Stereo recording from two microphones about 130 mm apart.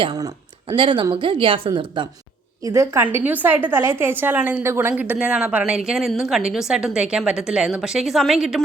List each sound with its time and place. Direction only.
0.0 s a sound: 30° right (ahead or behind)
0.8 s a woman's voice: 40° right (ahead or behind)
2.6 s a woman's voice: 20° right (ahead or behind); by 8.6 s 5° right (ahead or behind)